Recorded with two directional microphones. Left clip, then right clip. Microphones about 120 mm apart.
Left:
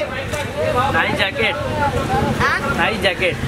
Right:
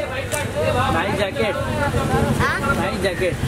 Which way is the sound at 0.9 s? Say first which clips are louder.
Left 3 dB; 30° left (ahead or behind).